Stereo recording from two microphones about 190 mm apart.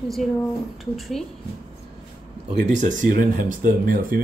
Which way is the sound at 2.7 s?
40° right (ahead or behind).